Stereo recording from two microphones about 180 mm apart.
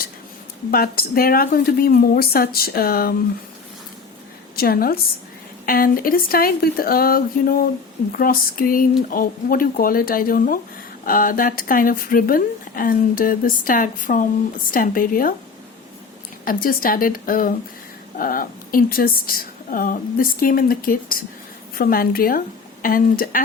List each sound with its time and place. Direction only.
0.7 s speech: 55° left (ahead or behind)
4.5 s a woman's voice: 55° left (ahead or behind)
16.4 s speech: 55° left (ahead or behind)